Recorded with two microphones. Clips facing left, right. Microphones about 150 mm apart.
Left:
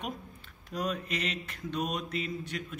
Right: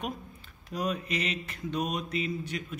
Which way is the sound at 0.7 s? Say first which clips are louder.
Right 2 dB; 5° right (ahead or behind).